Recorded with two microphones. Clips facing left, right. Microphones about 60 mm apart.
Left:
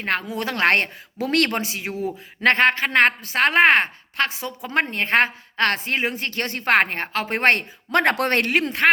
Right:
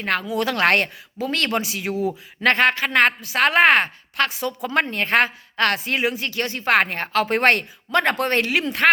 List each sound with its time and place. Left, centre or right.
0.0 s a woman's voice: left
1.2 s speech: left
1.5 s a woman's voice: left
8.1 s speech: left